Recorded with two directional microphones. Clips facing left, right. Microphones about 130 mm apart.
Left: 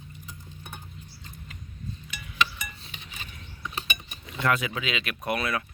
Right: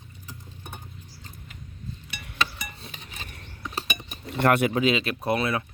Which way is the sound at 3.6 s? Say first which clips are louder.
Right 2 dB; 35° right (ahead or behind).